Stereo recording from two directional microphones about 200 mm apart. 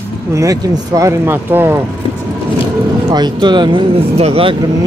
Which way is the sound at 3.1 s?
20° right (ahead or behind).